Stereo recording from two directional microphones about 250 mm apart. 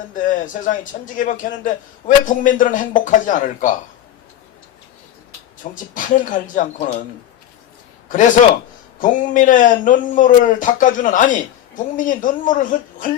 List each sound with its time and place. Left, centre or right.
0.1 s a man's voice: left
5.7 s a man's voice: left
9.0 s a man's voice: left